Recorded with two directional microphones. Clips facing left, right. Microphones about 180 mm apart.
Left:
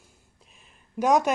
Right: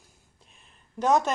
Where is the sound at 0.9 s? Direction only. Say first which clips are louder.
Left 2 dB; 10° left (ahead or behind).